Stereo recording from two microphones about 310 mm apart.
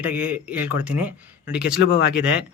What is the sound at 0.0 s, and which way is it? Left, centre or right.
Speech, centre.